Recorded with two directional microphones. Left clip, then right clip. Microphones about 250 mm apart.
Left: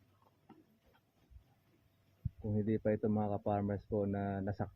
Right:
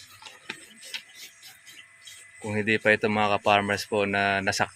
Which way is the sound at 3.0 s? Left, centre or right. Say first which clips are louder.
Right 13 dB; right.